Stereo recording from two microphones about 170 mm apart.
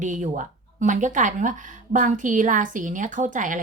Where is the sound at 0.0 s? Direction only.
45° right (ahead or behind).